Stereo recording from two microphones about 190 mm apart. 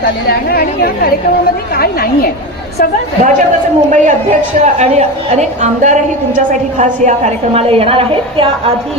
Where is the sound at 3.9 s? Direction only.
40° right (ahead or behind).